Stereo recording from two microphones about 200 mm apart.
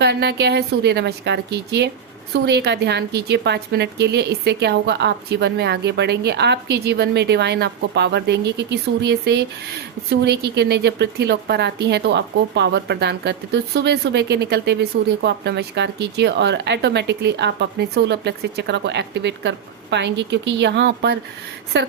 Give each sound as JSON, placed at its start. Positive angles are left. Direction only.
{"t": 0.0, "sound": "a woman's voice", "side_deg": -55}